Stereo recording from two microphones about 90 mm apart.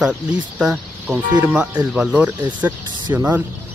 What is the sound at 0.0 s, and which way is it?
Speech, 5° right (ahead or behind).